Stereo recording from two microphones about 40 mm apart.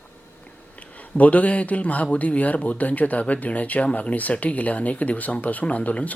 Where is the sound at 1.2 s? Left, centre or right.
Left.